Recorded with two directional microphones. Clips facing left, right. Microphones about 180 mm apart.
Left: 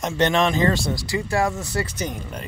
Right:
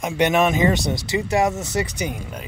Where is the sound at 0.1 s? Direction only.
15° right (ahead or behind).